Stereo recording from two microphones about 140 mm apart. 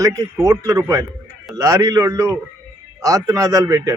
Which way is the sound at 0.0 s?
25° right (ahead or behind).